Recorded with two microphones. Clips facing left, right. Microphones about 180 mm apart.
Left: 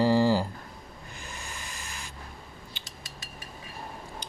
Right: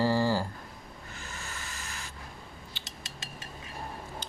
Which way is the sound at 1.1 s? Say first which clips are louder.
Left 1 dB; 15° left (ahead or behind).